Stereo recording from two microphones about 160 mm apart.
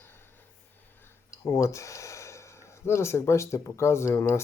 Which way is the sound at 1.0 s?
20° left (ahead or behind).